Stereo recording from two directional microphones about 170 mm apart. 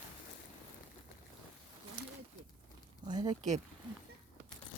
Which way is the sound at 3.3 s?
45° right (ahead or behind).